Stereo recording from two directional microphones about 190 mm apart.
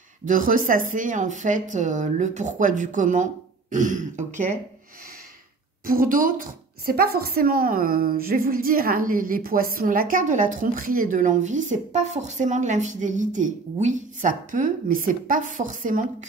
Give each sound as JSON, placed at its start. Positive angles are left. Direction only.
{"t": 0.3, "sound": "speech", "side_deg": -45}
{"t": 5.9, "sound": "a woman's voice", "side_deg": -45}